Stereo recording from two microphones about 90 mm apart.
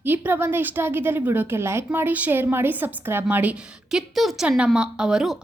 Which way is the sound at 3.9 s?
5° right (ahead or behind).